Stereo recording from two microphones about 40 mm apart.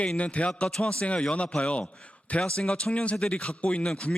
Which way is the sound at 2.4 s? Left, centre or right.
Centre.